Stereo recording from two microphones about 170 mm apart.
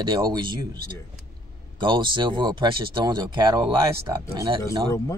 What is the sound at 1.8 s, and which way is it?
Speech, 30° right (ahead or behind).